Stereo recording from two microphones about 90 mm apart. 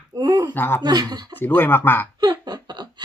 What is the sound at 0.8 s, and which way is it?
Speech, 50° right (ahead or behind).